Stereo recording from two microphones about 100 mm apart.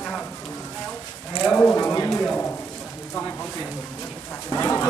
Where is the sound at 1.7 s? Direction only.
30° left (ahead or behind).